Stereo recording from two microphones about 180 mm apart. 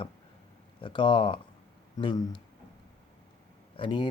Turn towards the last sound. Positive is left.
turn(degrees=25)  # may be behind; listen again after turning